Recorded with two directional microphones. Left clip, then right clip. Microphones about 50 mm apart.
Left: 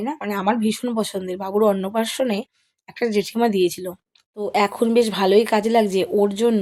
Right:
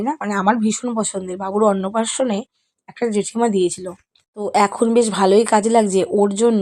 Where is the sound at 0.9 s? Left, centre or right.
Right.